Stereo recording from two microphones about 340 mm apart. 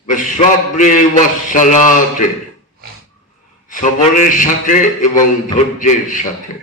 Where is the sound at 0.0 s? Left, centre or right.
Left.